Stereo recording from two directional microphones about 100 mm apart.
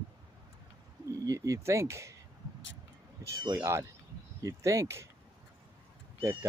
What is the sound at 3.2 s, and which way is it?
Speech, 30° right (ahead or behind).